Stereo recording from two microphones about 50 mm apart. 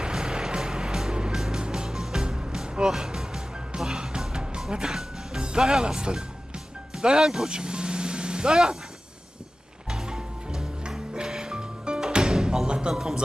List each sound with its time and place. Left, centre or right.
0.0 s vehicle: centre
1.4 s music: centre
6.9 s vehicle: centre
9.9 s music: centre
12.9 s music: centre